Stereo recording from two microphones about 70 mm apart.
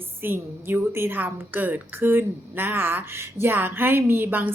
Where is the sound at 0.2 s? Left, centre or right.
Right.